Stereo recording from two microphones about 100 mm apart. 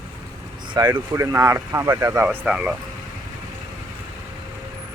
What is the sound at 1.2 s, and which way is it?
Speech, 30° right (ahead or behind).